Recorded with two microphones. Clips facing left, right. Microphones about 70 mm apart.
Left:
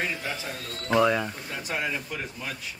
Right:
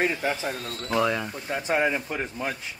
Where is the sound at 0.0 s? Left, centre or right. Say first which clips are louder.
Right 6 dB; right.